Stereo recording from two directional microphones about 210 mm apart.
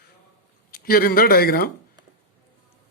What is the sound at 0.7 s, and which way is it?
Speech, 45° left (ahead or behind).